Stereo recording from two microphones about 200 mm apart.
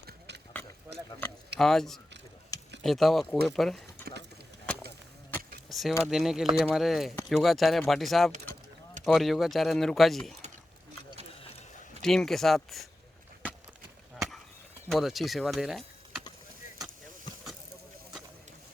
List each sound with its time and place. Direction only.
0.0 s horse: 55° right (ahead or behind)
1.5 s speech: centre (ahead or behind)
5.6 s a sound: centre (ahead or behind)
6.0 s speech: centre (ahead or behind)
12.0 s speech: centre (ahead or behind)
14.8 s speech: centre (ahead or behind)